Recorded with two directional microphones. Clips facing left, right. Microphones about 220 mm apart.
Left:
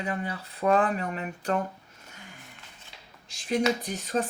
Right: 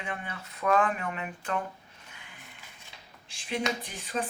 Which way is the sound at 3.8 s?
40° left (ahead or behind).